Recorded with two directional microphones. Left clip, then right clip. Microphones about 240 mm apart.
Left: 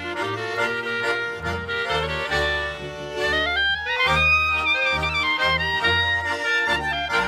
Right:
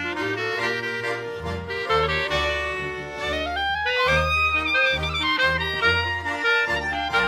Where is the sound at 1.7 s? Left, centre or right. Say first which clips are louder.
Right 3 dB; centre.